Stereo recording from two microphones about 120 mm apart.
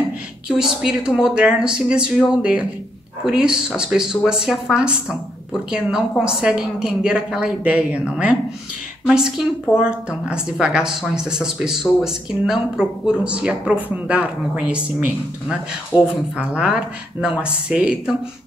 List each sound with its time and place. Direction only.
0.5 s a woman's voice: 5° right (ahead or behind)
15.9 s speech: 35° left (ahead or behind)
16.3 s a woman's voice: 10° right (ahead or behind)